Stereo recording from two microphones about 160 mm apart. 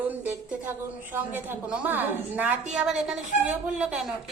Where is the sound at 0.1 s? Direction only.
10° right (ahead or behind).